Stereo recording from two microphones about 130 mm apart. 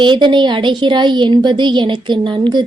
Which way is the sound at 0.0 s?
35° right (ahead or behind).